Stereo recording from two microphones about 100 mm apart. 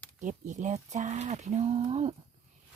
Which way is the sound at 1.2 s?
90° right.